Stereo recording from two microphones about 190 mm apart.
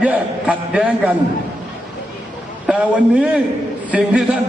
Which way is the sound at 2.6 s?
5° right (ahead or behind).